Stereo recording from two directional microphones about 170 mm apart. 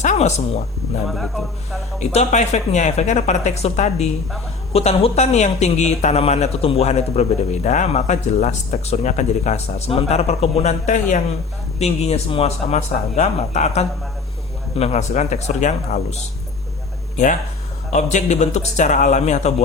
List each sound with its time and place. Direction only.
0.0 s speech: 45° left (ahead or behind)
1.0 s speech: centre (ahead or behind)
2.0 s speech: 45° left (ahead or behind)
17.9 s speech: 45° left (ahead or behind)